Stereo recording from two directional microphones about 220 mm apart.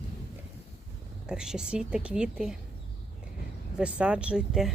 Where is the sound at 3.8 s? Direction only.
5° right (ahead or behind).